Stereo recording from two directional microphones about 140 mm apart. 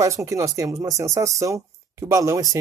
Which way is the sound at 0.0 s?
25° right (ahead or behind).